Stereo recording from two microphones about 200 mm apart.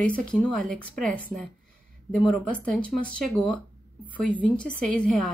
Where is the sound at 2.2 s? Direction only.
5° left (ahead or behind).